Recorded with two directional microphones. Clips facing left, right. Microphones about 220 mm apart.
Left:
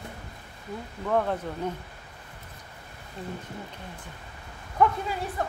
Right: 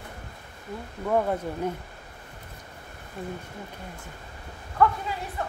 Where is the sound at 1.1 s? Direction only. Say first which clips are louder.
Right 1 dB; 10° right (ahead or behind).